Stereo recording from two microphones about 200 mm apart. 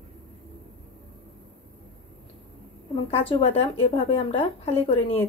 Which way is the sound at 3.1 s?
30° left (ahead or behind).